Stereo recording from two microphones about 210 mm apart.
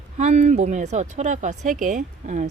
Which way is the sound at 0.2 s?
35° right (ahead or behind).